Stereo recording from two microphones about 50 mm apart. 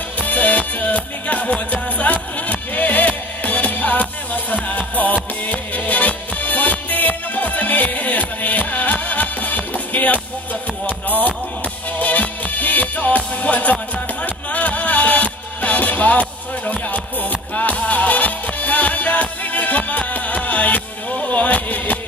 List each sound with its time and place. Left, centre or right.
0.2 s music: left